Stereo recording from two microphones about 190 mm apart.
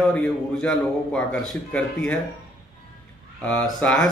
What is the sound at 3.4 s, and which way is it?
Speech, 5° left (ahead or behind).